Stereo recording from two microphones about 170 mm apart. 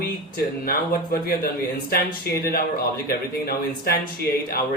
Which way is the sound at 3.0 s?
60° left (ahead or behind).